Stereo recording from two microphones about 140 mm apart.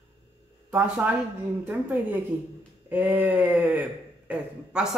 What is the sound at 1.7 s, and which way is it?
Speech, 10° right (ahead or behind).